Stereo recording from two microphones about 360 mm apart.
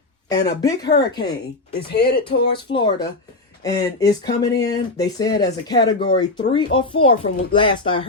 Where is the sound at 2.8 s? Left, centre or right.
Centre.